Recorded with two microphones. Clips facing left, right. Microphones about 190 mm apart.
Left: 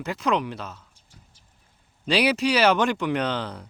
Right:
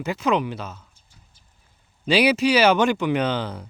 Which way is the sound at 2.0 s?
Centre (ahead or behind).